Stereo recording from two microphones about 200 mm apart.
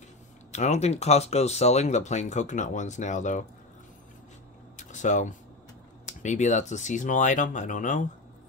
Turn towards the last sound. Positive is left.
turn(degrees=40)  # may be behind; listen again after turning